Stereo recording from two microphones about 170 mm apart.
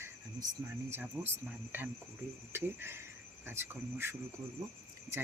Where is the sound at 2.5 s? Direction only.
15° right (ahead or behind).